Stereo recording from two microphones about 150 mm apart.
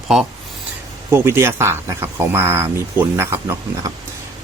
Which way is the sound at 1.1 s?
15° right (ahead or behind).